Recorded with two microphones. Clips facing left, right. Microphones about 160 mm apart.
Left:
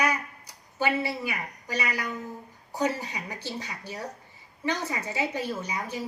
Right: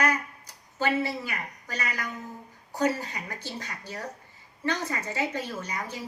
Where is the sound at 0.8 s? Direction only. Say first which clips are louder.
Even; 15° left (ahead or behind).